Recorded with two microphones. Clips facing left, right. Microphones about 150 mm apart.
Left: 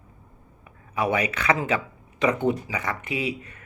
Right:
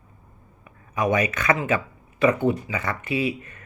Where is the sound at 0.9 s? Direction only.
10° left (ahead or behind).